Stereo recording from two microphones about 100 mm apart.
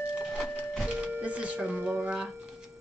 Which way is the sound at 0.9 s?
10° right (ahead or behind).